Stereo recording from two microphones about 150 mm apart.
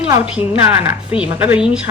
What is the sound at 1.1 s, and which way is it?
Speech, 10° right (ahead or behind).